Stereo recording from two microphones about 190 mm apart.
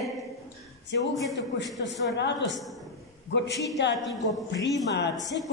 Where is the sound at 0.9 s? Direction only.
65° left (ahead or behind).